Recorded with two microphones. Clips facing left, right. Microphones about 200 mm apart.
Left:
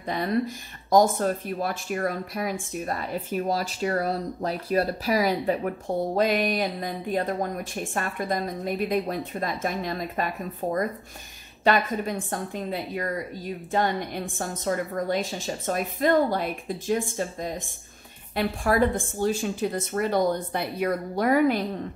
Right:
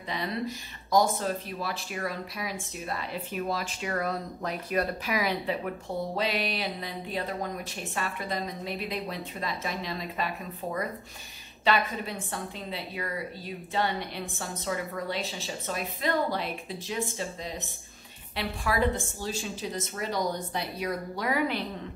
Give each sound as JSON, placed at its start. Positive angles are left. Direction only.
{"t": 0.0, "sound": "speech", "side_deg": 50}